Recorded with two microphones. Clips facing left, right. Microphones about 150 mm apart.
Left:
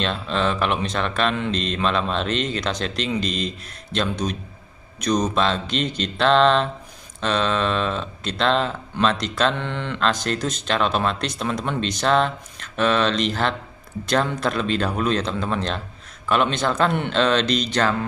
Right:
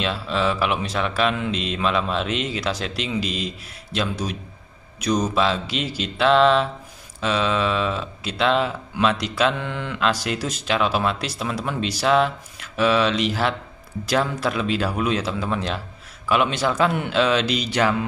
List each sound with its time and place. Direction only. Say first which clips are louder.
0.0 s speech: even; 5° right (ahead or behind)